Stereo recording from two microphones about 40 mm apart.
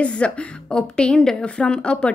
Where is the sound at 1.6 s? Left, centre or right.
Left.